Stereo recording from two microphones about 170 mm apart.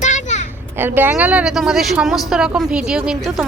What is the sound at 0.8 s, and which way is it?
A woman's voice, 10° right (ahead or behind).